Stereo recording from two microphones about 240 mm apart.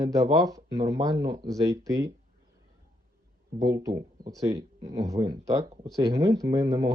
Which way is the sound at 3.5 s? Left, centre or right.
Centre.